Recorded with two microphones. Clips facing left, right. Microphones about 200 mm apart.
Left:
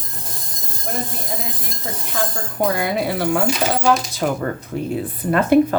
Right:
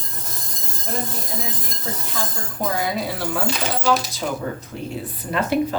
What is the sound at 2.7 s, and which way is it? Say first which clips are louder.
Speech: left 4 dB; 60° left (ahead or behind).